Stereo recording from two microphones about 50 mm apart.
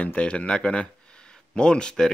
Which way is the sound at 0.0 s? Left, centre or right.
Left.